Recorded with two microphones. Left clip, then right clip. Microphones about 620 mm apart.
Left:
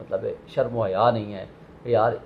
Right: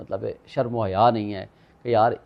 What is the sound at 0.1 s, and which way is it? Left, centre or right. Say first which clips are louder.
A man's voice: left 2 dB; right.